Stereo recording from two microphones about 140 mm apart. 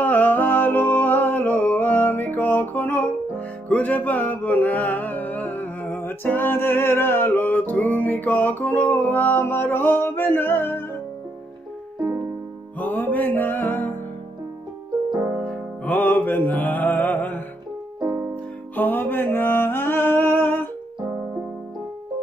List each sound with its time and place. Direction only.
0.0 s music: 10° left (ahead or behind)
12.7 s music: 10° left (ahead or behind)
15.4 s music: 10° left (ahead or behind)
18.8 s music: 15° left (ahead or behind)